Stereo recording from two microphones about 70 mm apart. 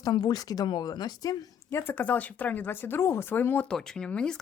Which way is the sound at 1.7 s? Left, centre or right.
Left.